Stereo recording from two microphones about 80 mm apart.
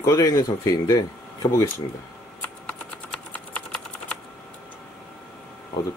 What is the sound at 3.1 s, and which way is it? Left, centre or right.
Typing, centre.